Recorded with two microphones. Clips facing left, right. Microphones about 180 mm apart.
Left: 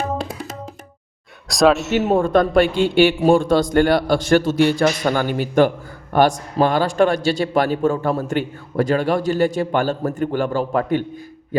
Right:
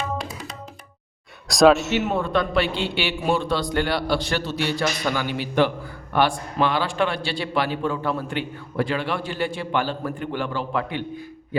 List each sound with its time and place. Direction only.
1.5 s a man's voice: centre (ahead or behind)
1.9 s a man's voice: 40° left (ahead or behind)